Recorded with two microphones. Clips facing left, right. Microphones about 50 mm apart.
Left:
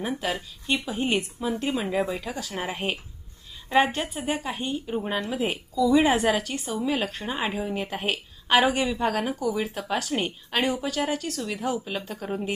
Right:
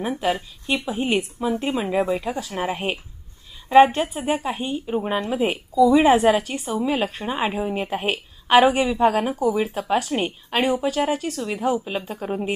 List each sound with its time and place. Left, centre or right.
0.0 s speech: centre
2.4 s a woman's voice: centre
9.3 s a woman's voice: right
9.6 s speech: centre